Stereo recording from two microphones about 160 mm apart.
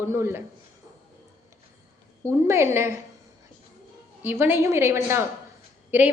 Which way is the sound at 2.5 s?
15° right (ahead or behind).